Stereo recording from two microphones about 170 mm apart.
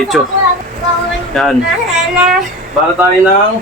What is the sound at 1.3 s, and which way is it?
Speech, centre (ahead or behind).